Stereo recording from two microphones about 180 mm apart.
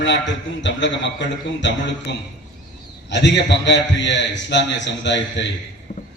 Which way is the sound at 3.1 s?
75° left (ahead or behind).